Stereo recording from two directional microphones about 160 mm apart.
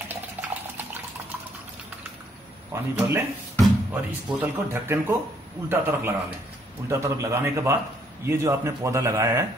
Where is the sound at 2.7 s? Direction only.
15° right (ahead or behind).